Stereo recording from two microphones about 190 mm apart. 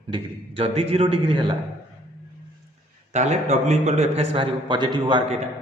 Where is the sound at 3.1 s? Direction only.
35° right (ahead or behind).